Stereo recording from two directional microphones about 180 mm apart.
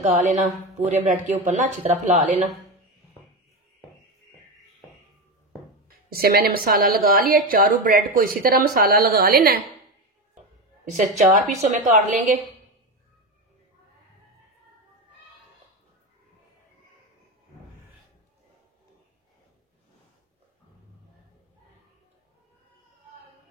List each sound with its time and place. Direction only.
0.2 s a woman's voice: 45° right (ahead or behind)
5.9 s a woman's voice: 55° right (ahead or behind)
11.0 s a woman's voice: 45° right (ahead or behind)